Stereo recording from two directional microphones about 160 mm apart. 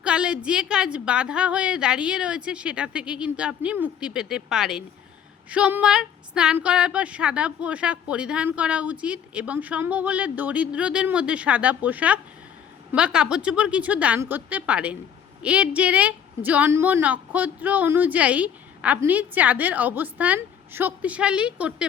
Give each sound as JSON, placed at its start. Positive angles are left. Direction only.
{"t": 0.0, "sound": "a woman's voice", "side_deg": -5}